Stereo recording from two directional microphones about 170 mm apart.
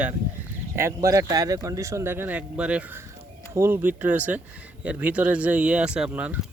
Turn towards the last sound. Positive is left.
turn(degrees=-10)  # may be behind; listen again after turning